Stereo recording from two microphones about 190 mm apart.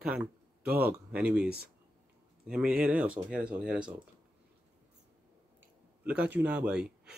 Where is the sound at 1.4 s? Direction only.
55° right (ahead or behind).